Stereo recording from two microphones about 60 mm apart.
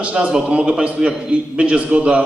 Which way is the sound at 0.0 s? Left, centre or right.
Centre.